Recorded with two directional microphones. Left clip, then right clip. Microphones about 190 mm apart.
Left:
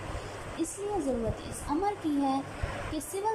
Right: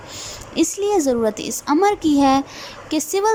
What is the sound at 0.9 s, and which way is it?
A woman's voice, 55° right (ahead or behind).